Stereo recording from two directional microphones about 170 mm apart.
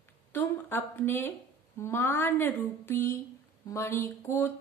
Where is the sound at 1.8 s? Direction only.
15° left (ahead or behind).